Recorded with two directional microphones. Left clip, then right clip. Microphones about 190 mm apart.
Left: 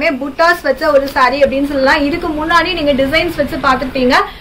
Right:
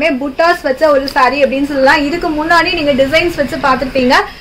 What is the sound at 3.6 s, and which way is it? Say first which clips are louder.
Speech: right 1 dB; 45° right (ahead or behind).